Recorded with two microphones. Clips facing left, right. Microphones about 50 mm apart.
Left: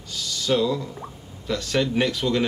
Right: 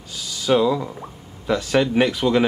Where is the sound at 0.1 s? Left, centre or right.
Centre.